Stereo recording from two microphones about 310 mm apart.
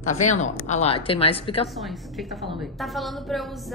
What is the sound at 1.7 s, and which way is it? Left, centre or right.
A woman's voice, centre.